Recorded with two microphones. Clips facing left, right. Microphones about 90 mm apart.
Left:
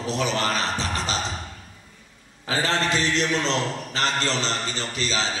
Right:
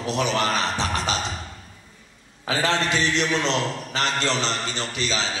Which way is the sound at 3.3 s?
35° left (ahead or behind).